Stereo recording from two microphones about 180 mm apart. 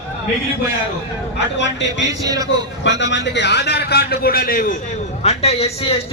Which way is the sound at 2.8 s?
90° left.